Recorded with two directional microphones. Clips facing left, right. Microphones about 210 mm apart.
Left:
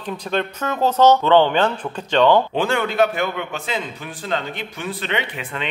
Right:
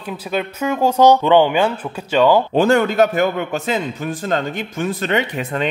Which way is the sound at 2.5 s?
40° right (ahead or behind).